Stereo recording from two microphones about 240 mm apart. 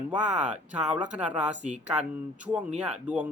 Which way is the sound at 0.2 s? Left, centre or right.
Centre.